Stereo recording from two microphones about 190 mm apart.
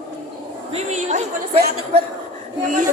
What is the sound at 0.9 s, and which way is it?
A woman's voice, 35° right (ahead or behind).